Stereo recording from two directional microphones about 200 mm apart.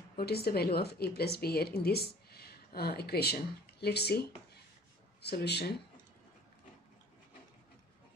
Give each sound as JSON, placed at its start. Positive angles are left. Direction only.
{"t": 0.2, "sound": "a woman's voice", "side_deg": 50}